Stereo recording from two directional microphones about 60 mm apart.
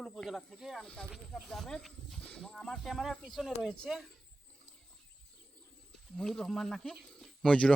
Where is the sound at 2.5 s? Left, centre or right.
Centre.